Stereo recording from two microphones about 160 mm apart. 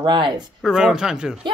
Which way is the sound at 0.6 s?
5° right (ahead or behind).